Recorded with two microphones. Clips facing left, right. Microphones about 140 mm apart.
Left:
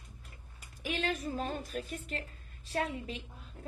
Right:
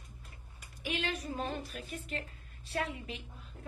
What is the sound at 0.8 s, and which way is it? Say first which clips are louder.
A woman's voice: left 2 dB; 40° left (ahead or behind).